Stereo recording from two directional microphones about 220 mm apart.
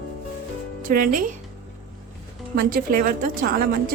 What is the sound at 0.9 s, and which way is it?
Speech, 35° right (ahead or behind).